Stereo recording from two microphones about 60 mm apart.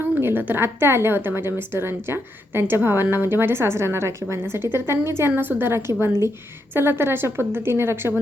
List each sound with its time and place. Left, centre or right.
0.0 s a woman's voice: right
5.3 s a woman's voice: right
6.7 s a woman's voice: right